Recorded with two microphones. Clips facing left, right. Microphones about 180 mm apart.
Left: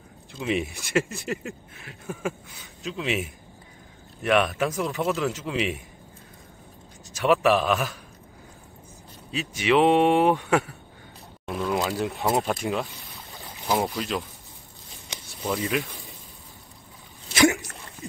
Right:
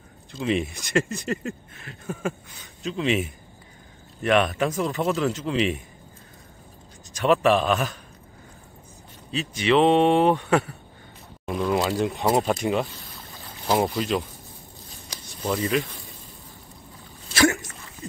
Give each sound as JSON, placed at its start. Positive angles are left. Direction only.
{"t": 0.3, "sound": "speech", "side_deg": 5}
{"t": 7.2, "sound": "speech", "side_deg": 5}
{"t": 9.3, "sound": "speech", "side_deg": 10}
{"t": 15.4, "sound": "speech", "side_deg": 5}
{"t": 17.3, "sound": "a sound", "side_deg": 15}